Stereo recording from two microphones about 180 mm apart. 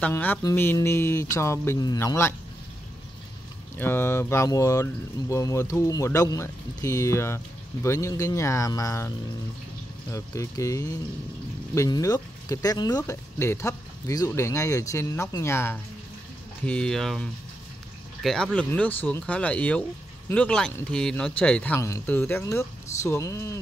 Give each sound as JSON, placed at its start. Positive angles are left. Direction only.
{"t": 0.0, "sound": "speech", "side_deg": 10}
{"t": 3.7, "sound": "speech", "side_deg": 10}
{"t": 10.1, "sound": "speech", "side_deg": 15}